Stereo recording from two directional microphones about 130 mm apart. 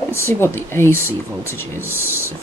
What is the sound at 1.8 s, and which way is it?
Speech, 20° right (ahead or behind).